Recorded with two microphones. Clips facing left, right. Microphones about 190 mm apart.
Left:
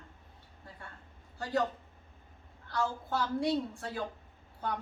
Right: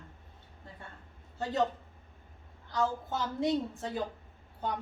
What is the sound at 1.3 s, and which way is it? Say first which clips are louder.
Speech: left 1 dB; 25° right (ahead or behind).